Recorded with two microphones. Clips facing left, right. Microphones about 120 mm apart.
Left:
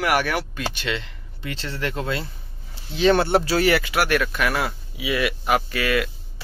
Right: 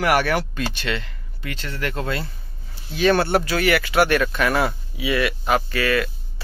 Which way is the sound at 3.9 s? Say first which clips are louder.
Right 3 dB; 5° left (ahead or behind).